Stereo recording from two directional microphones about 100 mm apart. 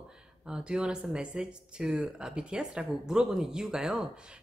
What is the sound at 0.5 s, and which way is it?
Speech, 10° right (ahead or behind).